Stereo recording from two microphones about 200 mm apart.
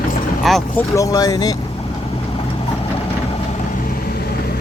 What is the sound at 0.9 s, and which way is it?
Speech, 15° left (ahead or behind).